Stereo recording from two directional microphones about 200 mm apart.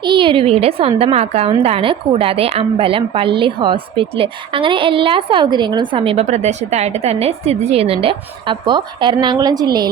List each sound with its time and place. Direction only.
0.0 s a woman's voice: 25° right (ahead or behind)